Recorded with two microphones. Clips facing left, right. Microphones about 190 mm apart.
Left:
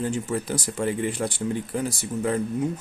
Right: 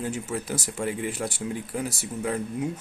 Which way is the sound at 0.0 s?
5° right (ahead or behind).